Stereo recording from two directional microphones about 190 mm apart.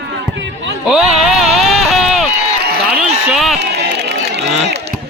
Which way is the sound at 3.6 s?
60° right (ahead or behind).